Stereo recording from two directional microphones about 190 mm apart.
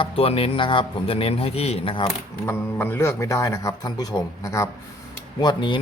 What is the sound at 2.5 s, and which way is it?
A man's voice, 10° left (ahead or behind).